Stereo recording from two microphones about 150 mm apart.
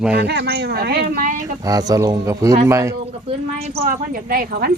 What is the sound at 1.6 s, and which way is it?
Speech, 25° right (ahead or behind).